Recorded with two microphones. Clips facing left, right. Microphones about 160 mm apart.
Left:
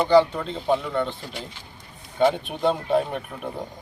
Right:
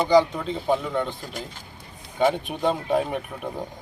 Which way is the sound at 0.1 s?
5° right (ahead or behind).